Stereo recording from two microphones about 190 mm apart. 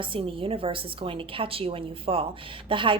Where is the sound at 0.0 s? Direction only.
30° right (ahead or behind).